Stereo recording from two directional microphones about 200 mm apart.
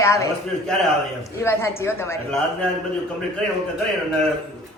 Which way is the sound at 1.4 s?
10° left (ahead or behind).